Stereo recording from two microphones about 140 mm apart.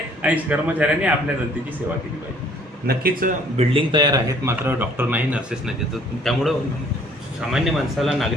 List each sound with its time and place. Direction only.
0.2 s speech: 10° right (ahead or behind)
2.8 s a man's voice: 90° right
3.6 s a man's voice: 40° right (ahead or behind)
4.4 s speech: 15° right (ahead or behind)
6.3 s speech: centre (ahead or behind)
7.5 s speech: centre (ahead or behind)